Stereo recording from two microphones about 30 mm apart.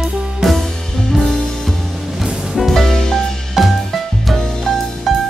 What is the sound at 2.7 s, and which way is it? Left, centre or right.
Music, centre.